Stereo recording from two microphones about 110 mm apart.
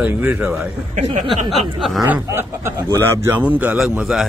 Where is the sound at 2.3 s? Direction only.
25° right (ahead or behind).